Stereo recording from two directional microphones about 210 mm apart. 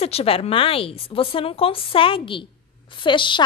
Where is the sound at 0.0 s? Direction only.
30° left (ahead or behind).